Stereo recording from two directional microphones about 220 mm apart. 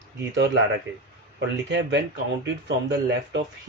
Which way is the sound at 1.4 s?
50° right (ahead or behind).